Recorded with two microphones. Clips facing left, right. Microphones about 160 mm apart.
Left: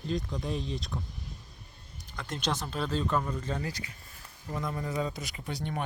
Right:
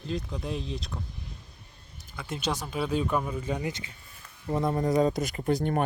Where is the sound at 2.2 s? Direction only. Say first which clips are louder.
Right 2 dB; 5° right (ahead or behind).